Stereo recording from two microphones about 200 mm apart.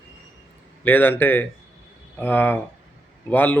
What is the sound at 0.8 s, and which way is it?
Speech, 10° left (ahead or behind).